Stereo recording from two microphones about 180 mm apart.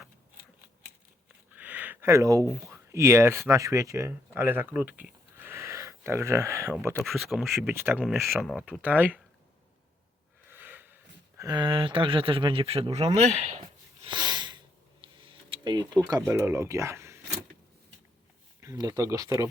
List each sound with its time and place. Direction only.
1.5 s a sound: 10° right (ahead or behind)
2.5 s speech: 15° right (ahead or behind)
7.0 s speech: centre (ahead or behind)
7.6 s speech: 15° right (ahead or behind)
8.4 s speech: 5° right (ahead or behind)
10.5 s snort: 10° right (ahead or behind)
11.3 s speech: 25° right (ahead or behind); by 13.6 s 40° right (ahead or behind)
14.0 s sniff: 25° right (ahead or behind)
15.2 s a sound: 30° right (ahead or behind)
16.0 s speech: 20° right (ahead or behind)
18.6 s speech: 20° right (ahead or behind)